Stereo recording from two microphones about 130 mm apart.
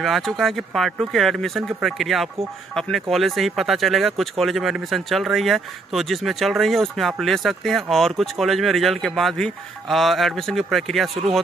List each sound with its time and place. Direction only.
0.0 s speech: centre (ahead or behind)